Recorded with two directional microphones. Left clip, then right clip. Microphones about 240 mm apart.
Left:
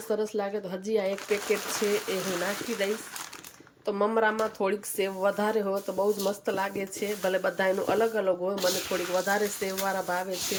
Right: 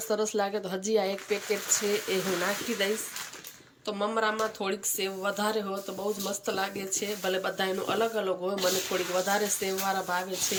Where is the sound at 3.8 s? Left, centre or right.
Centre.